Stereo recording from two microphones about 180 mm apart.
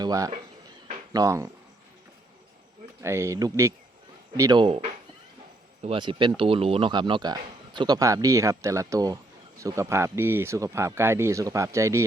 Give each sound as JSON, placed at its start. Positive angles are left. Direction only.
{"t": 0.0, "sound": "speech", "side_deg": -20}
{"t": 3.0, "sound": "speech", "side_deg": -15}